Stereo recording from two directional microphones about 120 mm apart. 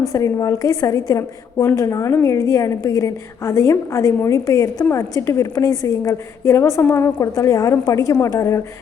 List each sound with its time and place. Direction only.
0.1 s a woman's voice: 25° left (ahead or behind)